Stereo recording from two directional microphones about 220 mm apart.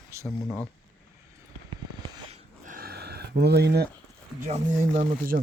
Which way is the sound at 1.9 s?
20° right (ahead or behind).